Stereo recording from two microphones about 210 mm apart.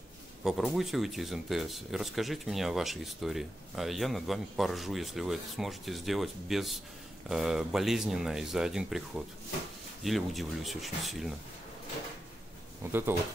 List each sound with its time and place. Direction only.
0.4 s speech: centre (ahead or behind)
10.0 s speech: centre (ahead or behind)
12.8 s speech: 10° right (ahead or behind)